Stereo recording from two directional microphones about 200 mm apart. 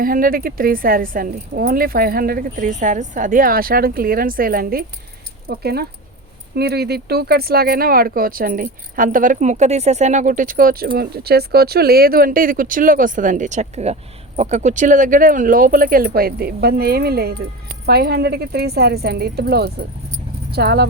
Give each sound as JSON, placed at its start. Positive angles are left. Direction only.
{"t": 0.0, "sound": "speech", "side_deg": -45}